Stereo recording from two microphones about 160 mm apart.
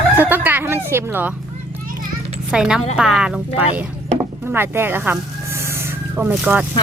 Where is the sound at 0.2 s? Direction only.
10° right (ahead or behind).